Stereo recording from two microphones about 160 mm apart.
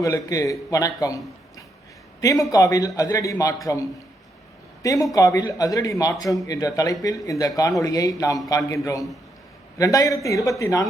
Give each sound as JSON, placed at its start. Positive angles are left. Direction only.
{"t": 0.0, "sound": "a man's voice", "side_deg": 20}